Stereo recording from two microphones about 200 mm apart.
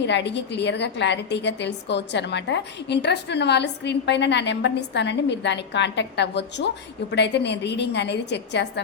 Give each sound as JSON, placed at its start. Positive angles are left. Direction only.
{"t": 0.0, "sound": "a woman's voice", "side_deg": 60}